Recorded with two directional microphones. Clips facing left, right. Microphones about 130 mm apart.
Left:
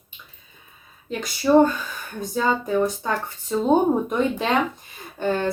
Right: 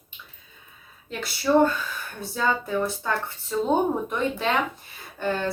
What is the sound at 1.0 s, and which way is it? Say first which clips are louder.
Speech: left 4 dB; 15° left (ahead or behind).